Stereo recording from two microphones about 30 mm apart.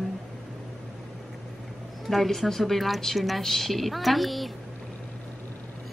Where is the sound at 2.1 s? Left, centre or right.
Centre.